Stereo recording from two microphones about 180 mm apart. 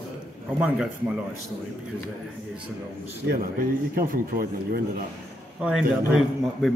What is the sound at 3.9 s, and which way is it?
Speech, 55° right (ahead or behind).